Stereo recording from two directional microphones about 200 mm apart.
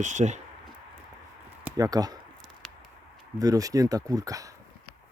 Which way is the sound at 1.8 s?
20° right (ahead or behind).